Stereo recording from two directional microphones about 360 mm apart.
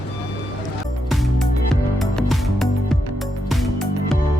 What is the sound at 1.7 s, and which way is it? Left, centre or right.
Music, centre.